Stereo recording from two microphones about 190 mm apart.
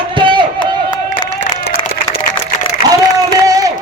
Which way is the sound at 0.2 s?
25° right (ahead or behind).